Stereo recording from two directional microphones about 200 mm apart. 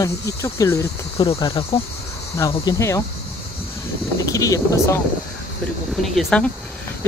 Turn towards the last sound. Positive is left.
turn(degrees=5)  # may be behind; listen again after turning